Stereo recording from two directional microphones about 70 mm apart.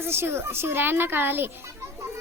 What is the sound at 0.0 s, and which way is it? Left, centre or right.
A woman's voice, right.